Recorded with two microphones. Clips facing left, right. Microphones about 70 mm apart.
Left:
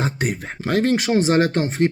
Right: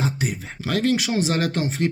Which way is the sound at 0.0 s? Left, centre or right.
Left.